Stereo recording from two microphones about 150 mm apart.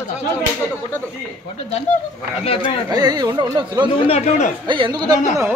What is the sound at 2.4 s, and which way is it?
Speech, 40° left (ahead or behind).